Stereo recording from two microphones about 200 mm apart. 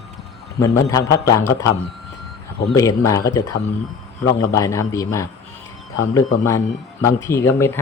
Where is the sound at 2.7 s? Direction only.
15° left (ahead or behind).